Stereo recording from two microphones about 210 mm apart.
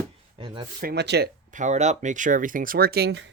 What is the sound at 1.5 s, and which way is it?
Speech, 35° right (ahead or behind).